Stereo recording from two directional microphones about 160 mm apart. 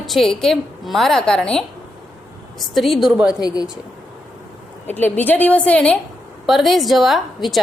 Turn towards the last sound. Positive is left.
turn(degrees=0)  # may be behind; listen again after turning